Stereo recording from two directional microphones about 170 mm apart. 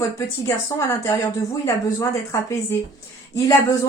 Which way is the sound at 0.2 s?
15° left (ahead or behind).